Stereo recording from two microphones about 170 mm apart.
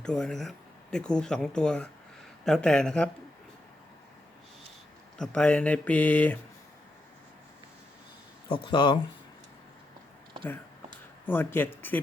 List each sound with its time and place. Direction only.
0.0 s speech: 5° left (ahead or behind)
5.1 s speech: 5° left (ahead or behind)
8.4 s speech: 30° left (ahead or behind)
10.4 s a sound: 10° left (ahead or behind)